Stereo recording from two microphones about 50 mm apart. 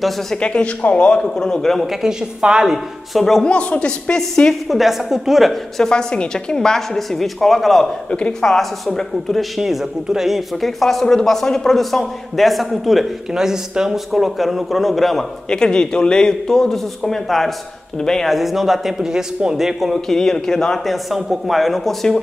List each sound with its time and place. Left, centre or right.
0.4 s speech: left
1.3 s a woman's voice: centre
1.9 s a man's voice: centre
3.4 s speech: left
4.6 s a man's voice: centre
5.9 s a woman's voice: centre
8.1 s a woman's voice: centre
13.3 s a man's voice: centre
15.5 s a woman's voice: centre
18.3 s a man's voice: centre